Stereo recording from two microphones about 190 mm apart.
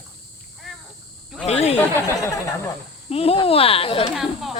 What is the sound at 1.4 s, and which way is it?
Speech, 35° left (ahead or behind).